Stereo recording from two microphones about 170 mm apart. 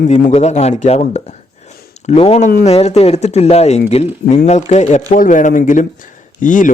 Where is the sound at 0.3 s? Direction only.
40° left (ahead or behind).